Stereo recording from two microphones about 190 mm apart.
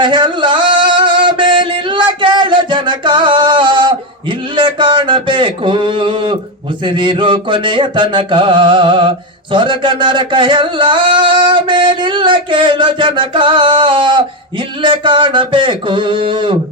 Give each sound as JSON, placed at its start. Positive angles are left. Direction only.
{"t": 0.0, "sound": "music", "side_deg": -25}
{"t": 4.5, "sound": "a sound", "side_deg": -25}
{"t": 6.8, "sound": "mantra", "side_deg": -25}